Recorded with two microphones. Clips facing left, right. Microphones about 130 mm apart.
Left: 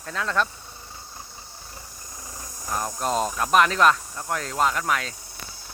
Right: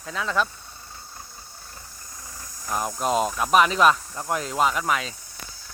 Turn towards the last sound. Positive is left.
turn(degrees=-5)  # may be behind; listen again after turning